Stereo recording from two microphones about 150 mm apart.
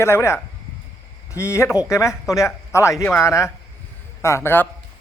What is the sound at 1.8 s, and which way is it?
A man's voice, 20° left (ahead or behind).